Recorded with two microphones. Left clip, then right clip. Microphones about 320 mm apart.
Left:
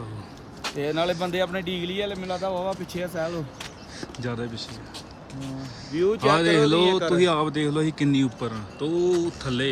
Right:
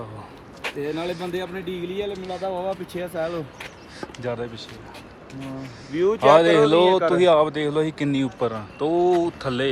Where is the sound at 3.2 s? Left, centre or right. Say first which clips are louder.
Right 2 dB; centre.